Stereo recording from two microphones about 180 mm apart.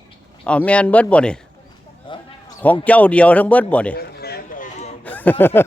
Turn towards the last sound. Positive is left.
turn(degrees=10)  # may be behind; listen again after turning